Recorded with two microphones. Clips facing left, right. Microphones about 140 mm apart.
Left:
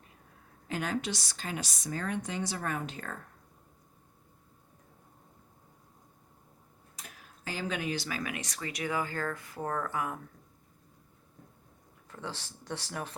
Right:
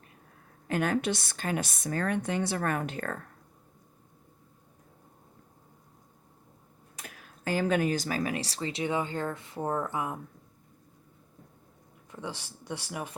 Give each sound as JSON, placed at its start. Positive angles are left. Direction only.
{"t": 0.7, "sound": "a woman's voice", "side_deg": -55}
{"t": 6.9, "sound": "speech", "side_deg": -60}
{"t": 12.1, "sound": "speech", "side_deg": -15}